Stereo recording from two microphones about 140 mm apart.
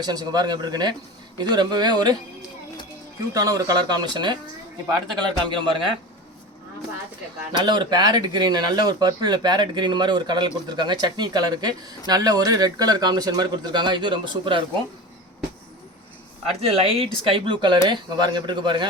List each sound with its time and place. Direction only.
0.0 s speech: 30° right (ahead or behind)
3.3 s speech: 25° right (ahead or behind)
7.6 s speech: 30° right (ahead or behind)
16.6 s speech: 45° right (ahead or behind)